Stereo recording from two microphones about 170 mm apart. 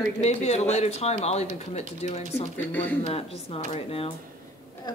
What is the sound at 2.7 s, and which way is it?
Speech, 10° left (ahead or behind).